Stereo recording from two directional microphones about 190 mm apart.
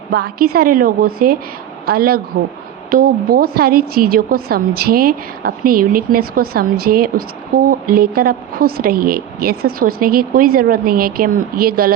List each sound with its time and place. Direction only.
0.1 s a woman's voice: 55° right (ahead or behind)